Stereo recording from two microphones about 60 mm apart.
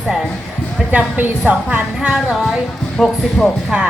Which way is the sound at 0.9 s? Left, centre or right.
Right.